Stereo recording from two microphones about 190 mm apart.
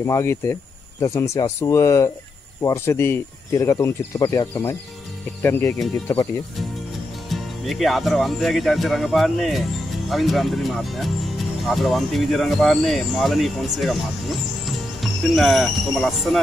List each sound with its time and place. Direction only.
0.0 s speech: 15° left (ahead or behind)
7.2 s speech: centre (ahead or behind)